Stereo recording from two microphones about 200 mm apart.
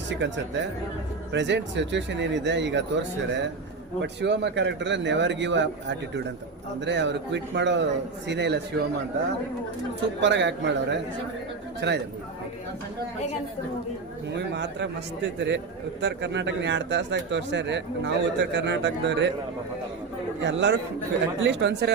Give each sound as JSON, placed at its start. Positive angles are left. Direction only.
{"t": 0.1, "sound": "a man's voice", "side_deg": -65}
{"t": 10.2, "sound": "a man's voice", "side_deg": -65}
{"t": 14.3, "sound": "a man's voice", "side_deg": -60}
{"t": 20.4, "sound": "a man's voice", "side_deg": -65}